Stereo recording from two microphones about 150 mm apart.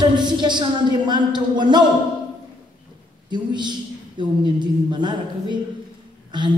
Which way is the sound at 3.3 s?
30° right (ahead or behind).